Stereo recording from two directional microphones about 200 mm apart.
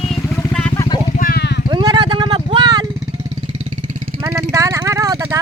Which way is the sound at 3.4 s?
25° right (ahead or behind).